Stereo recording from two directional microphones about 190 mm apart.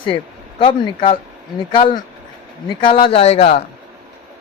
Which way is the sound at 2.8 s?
25° left (ahead or behind).